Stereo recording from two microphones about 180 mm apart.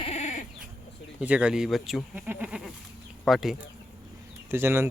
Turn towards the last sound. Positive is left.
turn(degrees=-15)  # may be behind; listen again after turning